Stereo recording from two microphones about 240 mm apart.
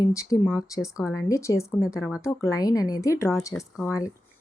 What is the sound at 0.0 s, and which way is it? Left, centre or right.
Speech, centre.